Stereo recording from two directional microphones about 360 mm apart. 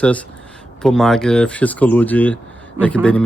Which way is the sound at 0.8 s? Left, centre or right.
Centre.